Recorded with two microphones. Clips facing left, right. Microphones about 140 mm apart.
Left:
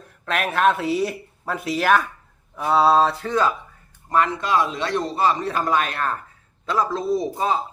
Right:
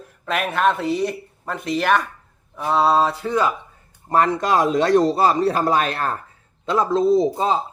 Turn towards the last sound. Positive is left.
turn(degrees=-25)  # may be behind; listen again after turning